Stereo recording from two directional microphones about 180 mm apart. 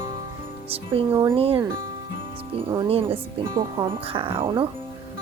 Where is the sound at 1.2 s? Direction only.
30° right (ahead or behind).